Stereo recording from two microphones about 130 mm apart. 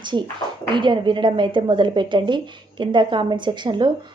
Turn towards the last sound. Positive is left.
turn(degrees=-35)  # may be behind; listen again after turning